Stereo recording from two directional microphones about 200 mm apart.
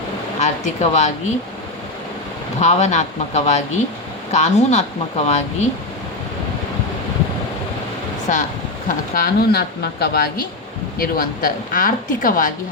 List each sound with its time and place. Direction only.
0.3 s speech: 35° left (ahead or behind)
2.6 s speech: 35° left (ahead or behind)
8.3 s speech: 40° left (ahead or behind)
9.1 s a woman's voice: 50° left (ahead or behind)